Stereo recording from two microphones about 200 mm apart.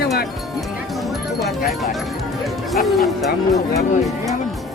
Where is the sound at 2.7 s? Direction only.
Centre (ahead or behind).